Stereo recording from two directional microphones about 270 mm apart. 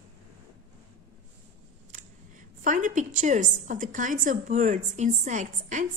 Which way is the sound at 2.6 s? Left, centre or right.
Right.